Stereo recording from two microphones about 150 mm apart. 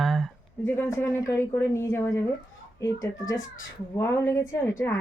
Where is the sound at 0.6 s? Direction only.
15° left (ahead or behind).